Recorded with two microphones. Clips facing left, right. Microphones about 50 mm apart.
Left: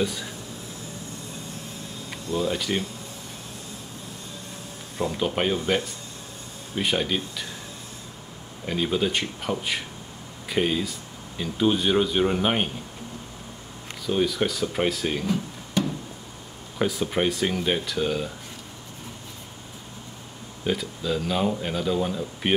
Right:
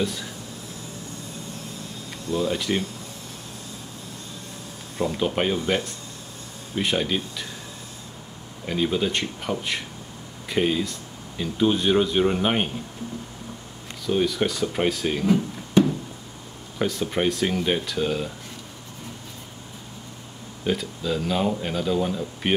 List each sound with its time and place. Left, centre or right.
0.0 s speech: centre
2.3 s speech: centre
4.9 s speech: centre
6.7 s speech: centre
8.6 s speech: centre
14.0 s speech: centre
15.2 s music: centre
16.7 s speech: centre
20.6 s speech: centre